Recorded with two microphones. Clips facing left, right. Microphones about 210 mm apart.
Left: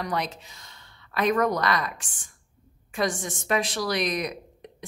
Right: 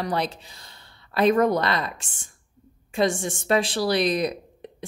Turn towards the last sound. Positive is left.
turn(degrees=-30)  # may be behind; listen again after turning